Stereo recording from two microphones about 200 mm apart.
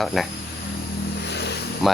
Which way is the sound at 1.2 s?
55° left (ahead or behind).